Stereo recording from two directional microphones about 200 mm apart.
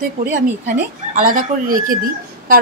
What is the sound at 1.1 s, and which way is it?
Speech, 45° right (ahead or behind).